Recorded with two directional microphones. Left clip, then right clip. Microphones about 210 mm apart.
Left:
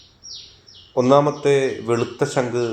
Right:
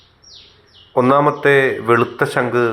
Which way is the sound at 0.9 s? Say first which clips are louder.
Right 2 dB; 5° right (ahead or behind).